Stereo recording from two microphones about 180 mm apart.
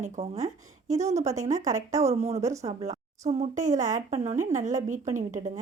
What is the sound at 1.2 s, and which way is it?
Speech, 15° right (ahead or behind).